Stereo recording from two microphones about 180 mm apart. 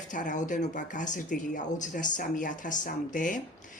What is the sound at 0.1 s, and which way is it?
A woman's voice, 45° left (ahead or behind).